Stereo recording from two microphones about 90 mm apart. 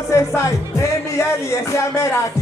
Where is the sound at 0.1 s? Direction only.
35° left (ahead or behind).